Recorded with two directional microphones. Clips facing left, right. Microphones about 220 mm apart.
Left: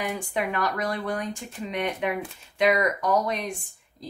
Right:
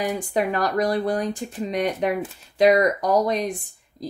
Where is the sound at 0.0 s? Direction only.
35° right (ahead or behind).